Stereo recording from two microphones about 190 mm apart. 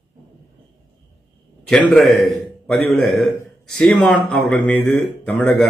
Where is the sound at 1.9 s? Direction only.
Centre (ahead or behind).